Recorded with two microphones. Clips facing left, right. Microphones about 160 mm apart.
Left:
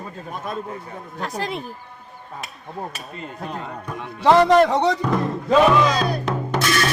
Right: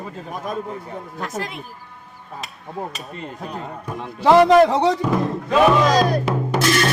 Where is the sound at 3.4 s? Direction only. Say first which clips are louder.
Left 3 dB; 5° right (ahead or behind).